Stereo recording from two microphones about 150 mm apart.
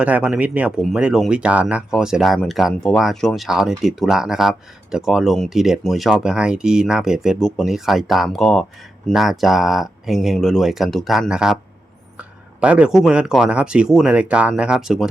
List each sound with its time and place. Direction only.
0.0 s speech: 10° right (ahead or behind)
12.5 s speech: 10° right (ahead or behind)